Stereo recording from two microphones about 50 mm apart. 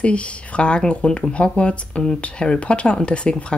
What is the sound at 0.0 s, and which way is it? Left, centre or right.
Speech, left.